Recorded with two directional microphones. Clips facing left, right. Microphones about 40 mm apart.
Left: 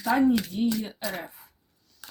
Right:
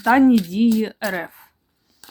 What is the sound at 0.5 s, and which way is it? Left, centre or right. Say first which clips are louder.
Speech: right 9 dB; right.